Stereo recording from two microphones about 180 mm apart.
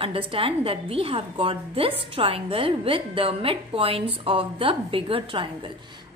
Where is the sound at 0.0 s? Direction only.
30° right (ahead or behind).